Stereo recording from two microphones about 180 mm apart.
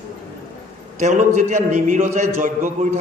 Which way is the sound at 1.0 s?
40° right (ahead or behind).